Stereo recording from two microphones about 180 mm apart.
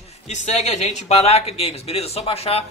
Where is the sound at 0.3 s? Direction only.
40° left (ahead or behind).